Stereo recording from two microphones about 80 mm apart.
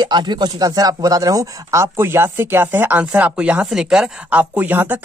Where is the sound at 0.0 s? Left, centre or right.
Right.